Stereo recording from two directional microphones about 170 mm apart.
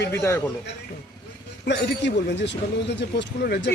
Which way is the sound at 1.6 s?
90° left.